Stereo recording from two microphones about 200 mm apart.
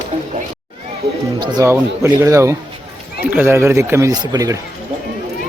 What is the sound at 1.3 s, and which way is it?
Speech, 20° right (ahead or behind).